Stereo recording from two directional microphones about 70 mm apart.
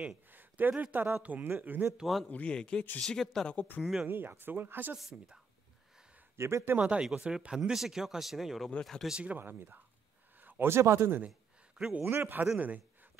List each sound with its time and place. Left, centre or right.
0.3 s a sound: right
0.9 s speech: right
2.2 s speech: centre
3.5 s speech: left
3.8 s speech: centre
4.1 s speech: right
4.9 s a woman's voice: centre
6.3 s speech: right
6.8 s a woman's voice: centre
9.1 s speech: centre
9.4 s speech: right
12.5 s a sound: right